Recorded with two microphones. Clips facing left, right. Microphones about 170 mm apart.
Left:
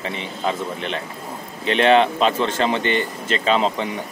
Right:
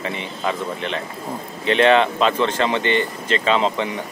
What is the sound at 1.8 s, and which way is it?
Speech, 35° left (ahead or behind).